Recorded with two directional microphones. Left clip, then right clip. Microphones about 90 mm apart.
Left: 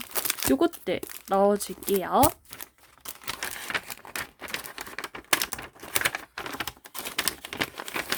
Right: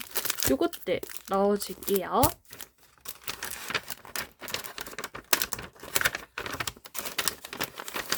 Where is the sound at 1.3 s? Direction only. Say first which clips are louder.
Left 3 dB; 25° left (ahead or behind).